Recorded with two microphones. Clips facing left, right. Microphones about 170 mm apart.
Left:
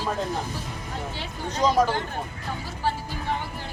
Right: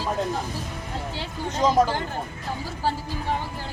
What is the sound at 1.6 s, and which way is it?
Speech, 20° right (ahead or behind).